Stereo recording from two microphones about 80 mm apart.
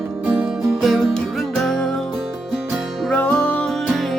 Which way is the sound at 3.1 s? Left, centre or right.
Left.